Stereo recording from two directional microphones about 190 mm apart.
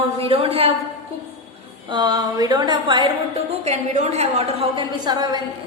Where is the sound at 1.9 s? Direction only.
20° right (ahead or behind).